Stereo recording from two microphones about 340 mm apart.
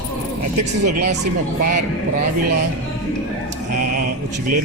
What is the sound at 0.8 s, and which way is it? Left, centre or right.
Speech, right.